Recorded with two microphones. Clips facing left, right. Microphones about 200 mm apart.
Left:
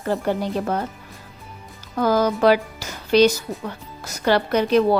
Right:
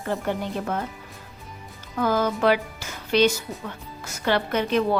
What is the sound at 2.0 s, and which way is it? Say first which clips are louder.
Music: left 4 dB; 40° left (ahead or behind).